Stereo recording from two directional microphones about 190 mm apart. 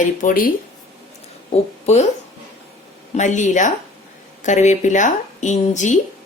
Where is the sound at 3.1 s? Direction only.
40° left (ahead or behind).